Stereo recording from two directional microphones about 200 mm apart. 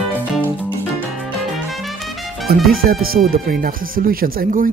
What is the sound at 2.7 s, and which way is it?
Speech, 45° right (ahead or behind).